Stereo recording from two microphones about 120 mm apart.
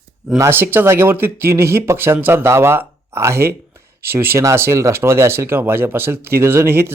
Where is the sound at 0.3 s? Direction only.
20° right (ahead or behind).